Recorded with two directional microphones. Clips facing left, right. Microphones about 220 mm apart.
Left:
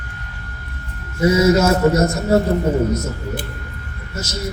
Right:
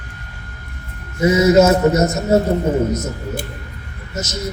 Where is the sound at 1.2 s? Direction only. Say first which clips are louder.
Right 2 dB; 20° right (ahead or behind).